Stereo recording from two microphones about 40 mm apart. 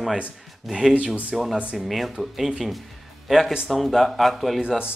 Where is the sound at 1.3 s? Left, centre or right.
Centre.